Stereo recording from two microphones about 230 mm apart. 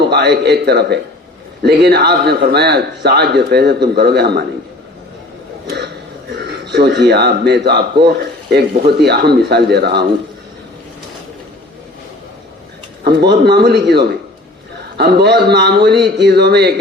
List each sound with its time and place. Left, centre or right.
0.0 s a man's voice: right
5.6 s a sound: right
6.3 s a man's voice: right
13.1 s a man's voice: right